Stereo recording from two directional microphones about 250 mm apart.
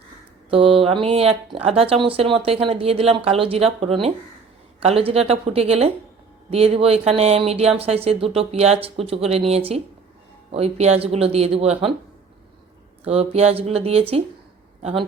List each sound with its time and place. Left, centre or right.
0.5 s speech: right
13.1 s speech: right